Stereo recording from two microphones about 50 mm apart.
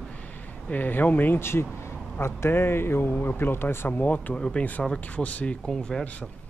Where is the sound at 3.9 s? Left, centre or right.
Left.